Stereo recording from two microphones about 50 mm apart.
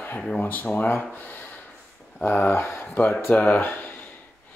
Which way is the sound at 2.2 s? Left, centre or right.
Left.